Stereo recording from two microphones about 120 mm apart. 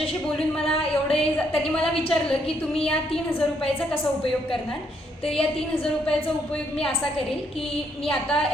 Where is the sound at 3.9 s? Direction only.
50° left (ahead or behind).